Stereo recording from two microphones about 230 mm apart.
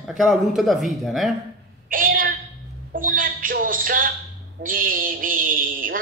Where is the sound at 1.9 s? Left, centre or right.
Right.